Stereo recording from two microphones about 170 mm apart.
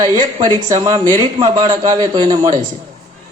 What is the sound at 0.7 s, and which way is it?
Speech, 20° right (ahead or behind).